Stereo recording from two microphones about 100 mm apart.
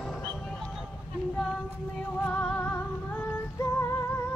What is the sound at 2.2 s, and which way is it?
Music, 15° left (ahead or behind).